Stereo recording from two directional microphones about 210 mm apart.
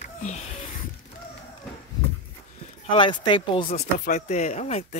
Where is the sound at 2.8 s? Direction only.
25° left (ahead or behind).